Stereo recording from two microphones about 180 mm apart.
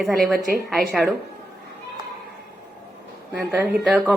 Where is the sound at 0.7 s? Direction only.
Centre (ahead or behind).